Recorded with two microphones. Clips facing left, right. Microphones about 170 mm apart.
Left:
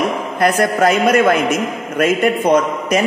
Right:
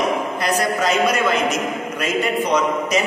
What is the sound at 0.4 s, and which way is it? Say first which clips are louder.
A man's voice: left 10 dB; 55° left (ahead or behind).